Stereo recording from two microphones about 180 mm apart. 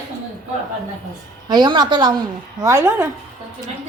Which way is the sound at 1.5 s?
25° right (ahead or behind).